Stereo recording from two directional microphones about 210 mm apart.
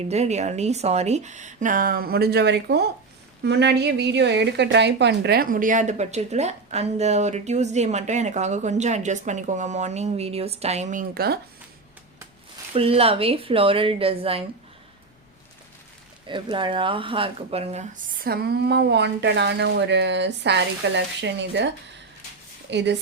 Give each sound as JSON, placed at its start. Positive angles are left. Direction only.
{"t": 0.0, "sound": "a woman's voice", "side_deg": -30}
{"t": 12.7, "sound": "a woman's voice", "side_deg": -25}
{"t": 16.2, "sound": "speech", "side_deg": -25}
{"t": 22.7, "sound": "a woman's voice", "side_deg": -55}